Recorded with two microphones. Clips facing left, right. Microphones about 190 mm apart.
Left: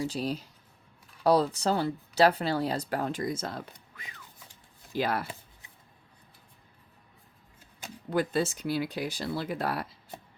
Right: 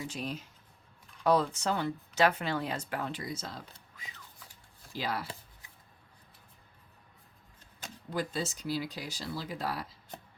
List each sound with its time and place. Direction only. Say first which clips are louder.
0.0 s speech: left 6 dB; 35° left (ahead or behind); by 3.6 s 55° left (ahead or behind)
4.9 s speech: left 6 dB; 55° left (ahead or behind)
8.1 s speech: left 7 dB; 60° left (ahead or behind)